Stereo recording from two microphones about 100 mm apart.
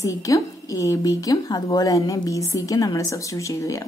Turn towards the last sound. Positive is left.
turn(degrees=30)  # may be behind; listen again after turning